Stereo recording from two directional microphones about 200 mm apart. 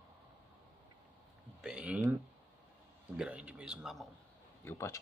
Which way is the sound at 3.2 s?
5° right (ahead or behind).